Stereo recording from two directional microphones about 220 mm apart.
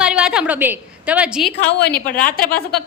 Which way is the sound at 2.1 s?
40° left (ahead or behind).